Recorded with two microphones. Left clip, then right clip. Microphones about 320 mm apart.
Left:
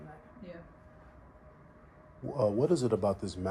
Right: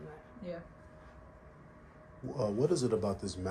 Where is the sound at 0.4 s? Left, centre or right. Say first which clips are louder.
Right 6 dB; centre.